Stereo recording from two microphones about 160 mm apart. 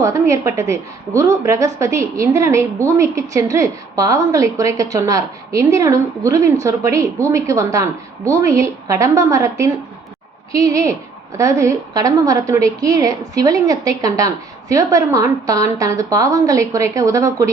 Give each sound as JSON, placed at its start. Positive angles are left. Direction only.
{"t": 0.0, "sound": "a woman's voice", "side_deg": -20}